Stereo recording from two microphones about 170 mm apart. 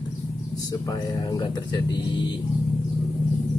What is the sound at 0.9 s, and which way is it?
Speech, 25° left (ahead or behind).